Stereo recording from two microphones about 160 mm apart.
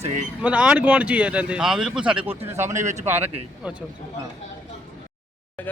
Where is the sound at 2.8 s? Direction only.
50° right (ahead or behind).